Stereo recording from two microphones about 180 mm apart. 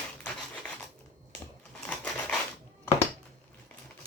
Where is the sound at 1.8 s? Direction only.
5° left (ahead or behind).